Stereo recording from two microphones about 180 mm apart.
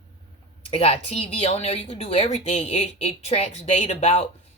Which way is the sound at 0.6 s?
35° left (ahead or behind).